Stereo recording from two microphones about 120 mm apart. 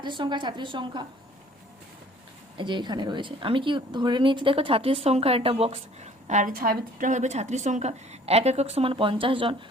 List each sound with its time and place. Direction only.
0.0 s a woman's voice: 40° right (ahead or behind)
2.6 s a woman's voice: 40° right (ahead or behind)